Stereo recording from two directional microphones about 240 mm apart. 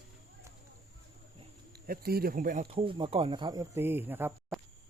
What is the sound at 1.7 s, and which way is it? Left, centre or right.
Speech, right.